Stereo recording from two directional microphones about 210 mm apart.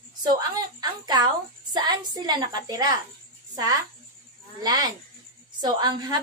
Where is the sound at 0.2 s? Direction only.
20° right (ahead or behind).